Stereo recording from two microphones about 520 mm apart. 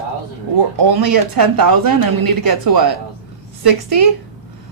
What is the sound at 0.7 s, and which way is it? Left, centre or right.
Speech, right.